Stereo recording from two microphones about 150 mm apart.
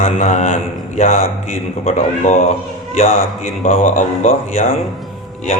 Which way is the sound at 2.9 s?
50° left (ahead or behind).